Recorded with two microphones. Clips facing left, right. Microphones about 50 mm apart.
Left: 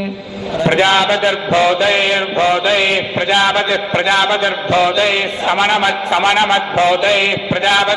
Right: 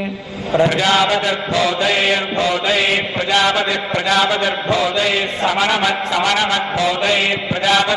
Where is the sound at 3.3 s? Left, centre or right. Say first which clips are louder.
Left 2 dB; centre.